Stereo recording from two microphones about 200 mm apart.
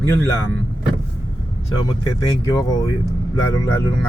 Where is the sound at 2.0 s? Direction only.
15° left (ahead or behind).